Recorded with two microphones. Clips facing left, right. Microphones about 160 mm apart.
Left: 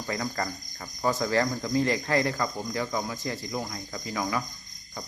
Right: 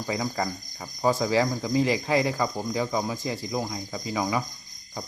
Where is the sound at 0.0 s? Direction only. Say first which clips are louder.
Right 3 dB; 10° right (ahead or behind).